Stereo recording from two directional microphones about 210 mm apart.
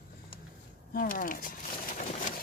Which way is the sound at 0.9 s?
45° left (ahead or behind).